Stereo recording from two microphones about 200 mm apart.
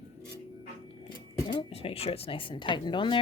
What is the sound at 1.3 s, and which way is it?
Speech, 25° left (ahead or behind).